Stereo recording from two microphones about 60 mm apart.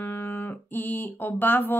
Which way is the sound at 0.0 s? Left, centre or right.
Left.